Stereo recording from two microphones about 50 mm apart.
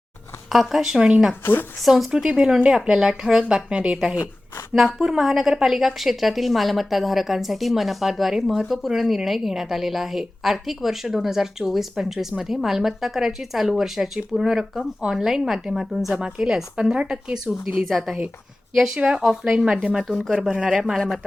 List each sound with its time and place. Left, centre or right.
0.5 s speech: centre
1.3 s speech: left
2.0 s a woman's voice: centre
16.1 s a woman's voice: centre
18.9 s speech: centre
19.2 s a woman's voice: centre
19.6 s speech: centre
20.1 s a woman's voice: centre
20.5 s speech: centre